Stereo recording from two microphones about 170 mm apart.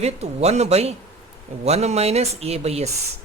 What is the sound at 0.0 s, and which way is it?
Speech, 40° right (ahead or behind).